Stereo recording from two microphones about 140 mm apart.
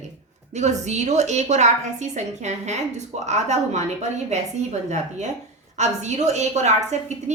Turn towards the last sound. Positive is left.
turn(degrees=-55)  # may be behind; listen again after turning